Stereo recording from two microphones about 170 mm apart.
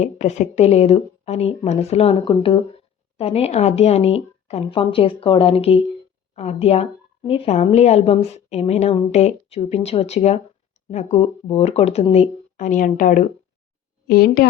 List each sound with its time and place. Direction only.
0.0 s a woman's voice: 45° left (ahead or behind)
14.1 s a woman's voice: 65° left (ahead or behind)